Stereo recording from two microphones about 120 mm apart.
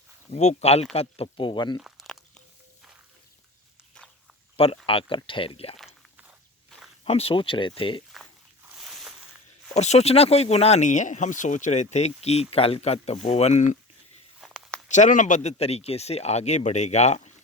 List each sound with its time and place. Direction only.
0.3 s speech: 65° left (ahead or behind); by 1.8 s 40° left (ahead or behind)
1.8 s crumpling: centre (ahead or behind)
4.5 s speech: 55° left (ahead or behind)
7.0 s speech: 55° left (ahead or behind)
8.8 s a sound: centre (ahead or behind)
9.7 s speech: 70° left (ahead or behind)
14.4 s a sound: 5° right (ahead or behind)
14.8 s speech: 90° left; by 17.3 s 70° left (ahead or behind)